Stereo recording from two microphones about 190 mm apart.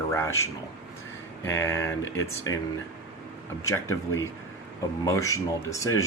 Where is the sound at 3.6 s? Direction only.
15° left (ahead or behind).